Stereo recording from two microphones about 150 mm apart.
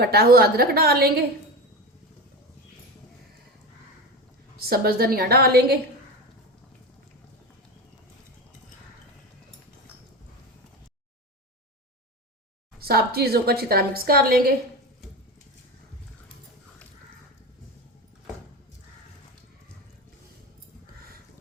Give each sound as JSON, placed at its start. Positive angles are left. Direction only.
{"t": 0.0, "sound": "a woman's voice", "side_deg": -90}
{"t": 4.5, "sound": "a woman's voice", "side_deg": -90}
{"t": 12.8, "sound": "a woman's voice", "side_deg": -90}